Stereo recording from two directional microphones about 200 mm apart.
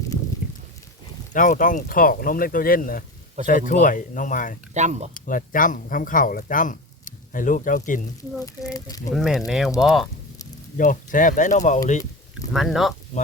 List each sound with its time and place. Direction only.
1.3 s speech: 40° left (ahead or behind)
4.7 s speech: 35° right (ahead or behind)
5.1 s speech: 45° left (ahead or behind)
8.7 s speech: 20° left (ahead or behind)
9.1 s speech: centre (ahead or behind)
10.8 s speech: 40° left (ahead or behind)
12.5 s speech: centre (ahead or behind)